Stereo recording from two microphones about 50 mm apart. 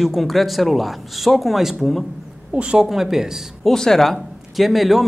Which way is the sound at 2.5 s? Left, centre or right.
Right.